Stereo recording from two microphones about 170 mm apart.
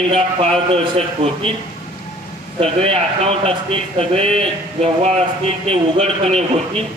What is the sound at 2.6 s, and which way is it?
Speech, 35° right (ahead or behind).